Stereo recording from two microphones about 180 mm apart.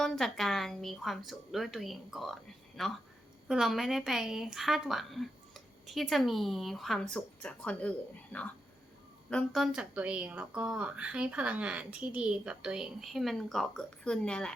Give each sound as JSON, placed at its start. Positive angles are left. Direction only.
{"t": 0.0, "sound": "a woman's voice", "side_deg": 0}